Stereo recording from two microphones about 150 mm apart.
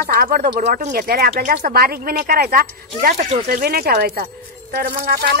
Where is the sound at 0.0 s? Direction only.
75° right (ahead or behind).